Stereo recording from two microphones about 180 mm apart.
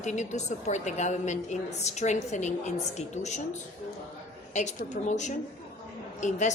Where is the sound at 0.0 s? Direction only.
40° left (ahead or behind).